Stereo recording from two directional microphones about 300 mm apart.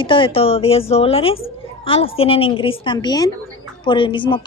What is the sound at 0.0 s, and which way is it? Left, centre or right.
A woman's voice, centre.